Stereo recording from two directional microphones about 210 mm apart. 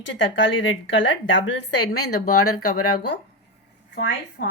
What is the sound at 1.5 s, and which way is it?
Speech, 90° left.